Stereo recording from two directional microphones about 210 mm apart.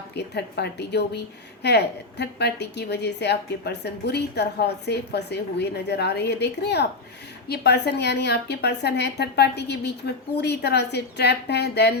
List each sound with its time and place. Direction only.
0.1 s a woman's voice: 50° left (ahead or behind)